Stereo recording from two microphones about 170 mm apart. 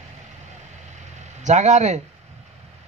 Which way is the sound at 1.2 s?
45° right (ahead or behind).